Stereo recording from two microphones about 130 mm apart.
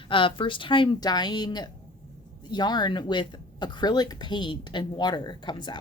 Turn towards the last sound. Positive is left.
turn(degrees=35)  # may be behind; listen again after turning